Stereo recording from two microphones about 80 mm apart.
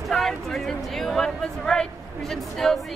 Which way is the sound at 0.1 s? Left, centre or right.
Centre.